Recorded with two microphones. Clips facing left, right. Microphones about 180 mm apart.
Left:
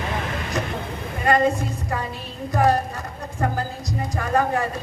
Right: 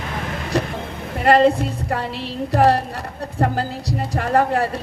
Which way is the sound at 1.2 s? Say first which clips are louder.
Right 5 dB; 65° right (ahead or behind).